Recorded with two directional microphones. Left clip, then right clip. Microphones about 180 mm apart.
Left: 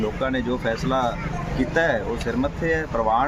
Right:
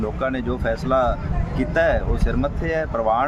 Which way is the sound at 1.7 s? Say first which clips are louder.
Right 2 dB; 20° right (ahead or behind).